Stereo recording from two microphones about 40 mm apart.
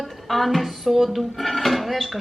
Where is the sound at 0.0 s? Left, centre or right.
Centre.